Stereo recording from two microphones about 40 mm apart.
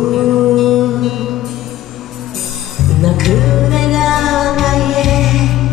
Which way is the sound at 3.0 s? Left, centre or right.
Centre.